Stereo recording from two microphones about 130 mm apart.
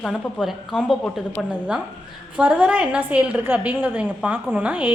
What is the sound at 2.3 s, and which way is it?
A woman's voice, 10° right (ahead or behind).